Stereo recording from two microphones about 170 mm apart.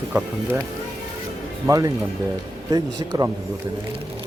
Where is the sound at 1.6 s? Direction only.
20° right (ahead or behind).